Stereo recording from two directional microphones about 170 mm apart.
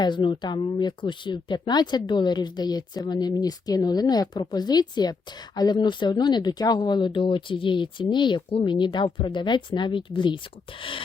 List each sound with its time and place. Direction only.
0.0 s speech: 25° left (ahead or behind)